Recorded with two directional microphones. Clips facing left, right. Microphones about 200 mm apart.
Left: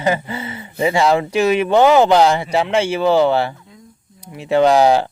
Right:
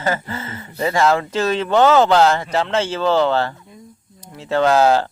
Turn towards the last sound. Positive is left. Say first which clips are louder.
# left 2 dB
turn(degrees=15)  # may be behind; listen again after turning